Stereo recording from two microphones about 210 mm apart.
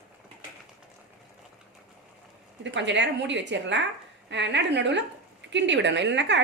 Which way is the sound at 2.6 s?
60° right (ahead or behind).